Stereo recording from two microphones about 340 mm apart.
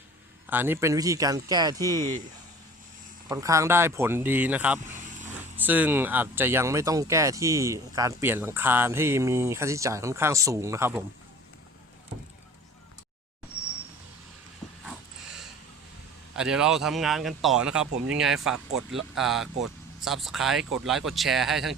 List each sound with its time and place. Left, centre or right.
0.4 s speech: centre
3.2 s speech: centre
13.5 s a sound: left
16.3 s speech: centre